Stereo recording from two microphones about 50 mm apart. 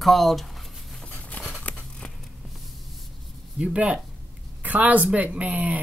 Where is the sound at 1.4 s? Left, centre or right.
Left.